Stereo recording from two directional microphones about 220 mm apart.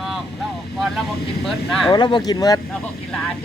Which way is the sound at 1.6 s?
Centre (ahead or behind).